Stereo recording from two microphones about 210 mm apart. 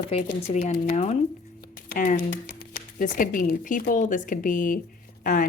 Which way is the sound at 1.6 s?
45° left (ahead or behind).